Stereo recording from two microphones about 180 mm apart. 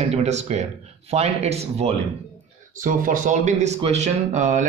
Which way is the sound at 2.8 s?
50° right (ahead or behind).